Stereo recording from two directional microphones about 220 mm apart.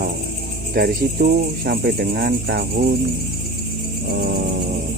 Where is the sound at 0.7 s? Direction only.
45° right (ahead or behind).